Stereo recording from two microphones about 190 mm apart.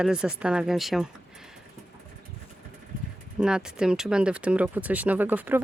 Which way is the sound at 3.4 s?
5° right (ahead or behind).